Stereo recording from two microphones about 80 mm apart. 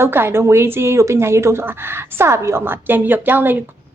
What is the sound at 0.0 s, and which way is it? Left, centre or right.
A woman's voice, right.